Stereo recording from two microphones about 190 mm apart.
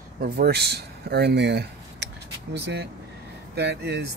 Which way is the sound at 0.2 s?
55° right (ahead or behind).